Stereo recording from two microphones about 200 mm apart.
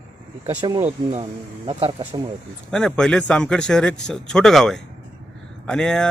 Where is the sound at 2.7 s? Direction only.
5° left (ahead or behind).